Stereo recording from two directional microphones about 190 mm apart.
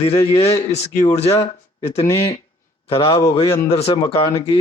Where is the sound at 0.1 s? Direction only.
30° left (ahead or behind).